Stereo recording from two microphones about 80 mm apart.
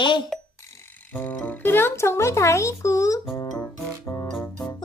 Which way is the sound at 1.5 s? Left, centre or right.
Left.